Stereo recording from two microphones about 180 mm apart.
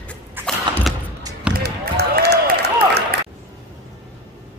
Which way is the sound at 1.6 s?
65° right (ahead or behind).